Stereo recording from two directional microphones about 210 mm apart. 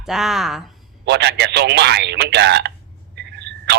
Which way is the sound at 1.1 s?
55° right (ahead or behind).